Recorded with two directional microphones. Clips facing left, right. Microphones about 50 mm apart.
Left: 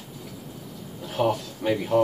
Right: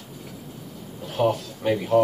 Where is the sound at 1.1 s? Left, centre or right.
Centre.